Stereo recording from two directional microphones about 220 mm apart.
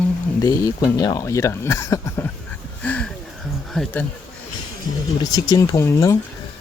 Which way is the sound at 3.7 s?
5° left (ahead or behind).